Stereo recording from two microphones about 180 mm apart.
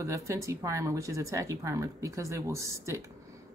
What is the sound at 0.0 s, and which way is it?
Speech, 15° right (ahead or behind).